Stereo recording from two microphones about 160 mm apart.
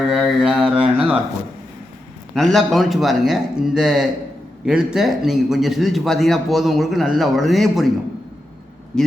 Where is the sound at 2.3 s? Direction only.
Centre (ahead or behind).